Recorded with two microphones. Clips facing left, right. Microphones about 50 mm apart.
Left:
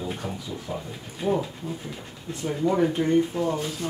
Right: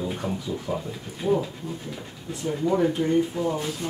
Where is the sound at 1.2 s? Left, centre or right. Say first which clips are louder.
Right 1 dB; centre.